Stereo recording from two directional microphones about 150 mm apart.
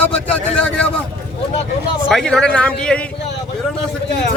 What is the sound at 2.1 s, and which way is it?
Speech, 5° left (ahead or behind).